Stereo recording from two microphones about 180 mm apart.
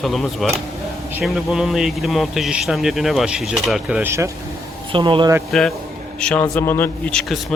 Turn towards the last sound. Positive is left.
turn(degrees=10)  # may be behind; listen again after turning